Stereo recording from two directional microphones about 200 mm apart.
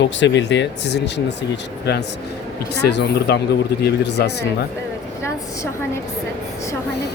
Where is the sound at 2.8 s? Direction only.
55° left (ahead or behind).